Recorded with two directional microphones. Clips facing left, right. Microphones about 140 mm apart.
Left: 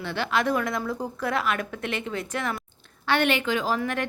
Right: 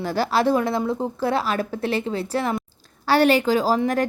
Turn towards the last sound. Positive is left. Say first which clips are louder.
# right 6 dB
turn(degrees=-35)  # may be behind; listen again after turning